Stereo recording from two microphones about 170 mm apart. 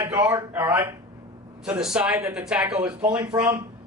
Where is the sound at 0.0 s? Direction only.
20° right (ahead or behind).